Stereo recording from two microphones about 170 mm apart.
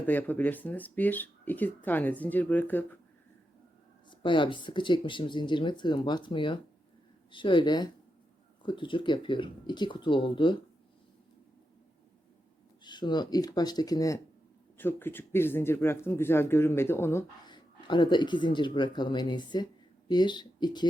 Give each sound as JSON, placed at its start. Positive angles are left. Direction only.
{"t": 0.0, "sound": "speech", "side_deg": 10}
{"t": 4.1, "sound": "speech", "side_deg": 30}
{"t": 12.8, "sound": "speech", "side_deg": 25}
{"t": 17.4, "sound": "speech", "side_deg": 25}